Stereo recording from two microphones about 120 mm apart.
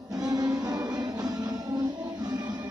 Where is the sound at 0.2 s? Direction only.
30° right (ahead or behind).